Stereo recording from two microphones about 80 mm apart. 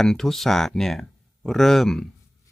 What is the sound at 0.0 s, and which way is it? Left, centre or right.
Speech, centre.